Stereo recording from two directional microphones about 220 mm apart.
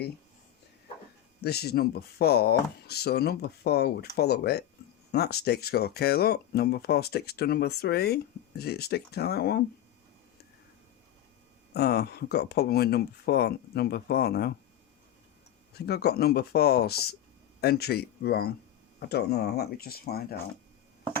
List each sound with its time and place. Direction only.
1.4 s speech: 45° left (ahead or behind)
11.7 s speech: 45° left (ahead or behind)
15.9 s speech: 45° left (ahead or behind)